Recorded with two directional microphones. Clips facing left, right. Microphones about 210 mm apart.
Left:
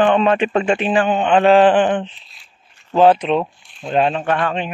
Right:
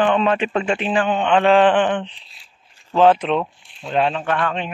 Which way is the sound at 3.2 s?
5° left (ahead or behind).